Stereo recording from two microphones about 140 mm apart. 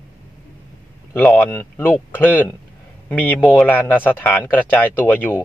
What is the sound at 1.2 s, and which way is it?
Speech, 10° left (ahead or behind).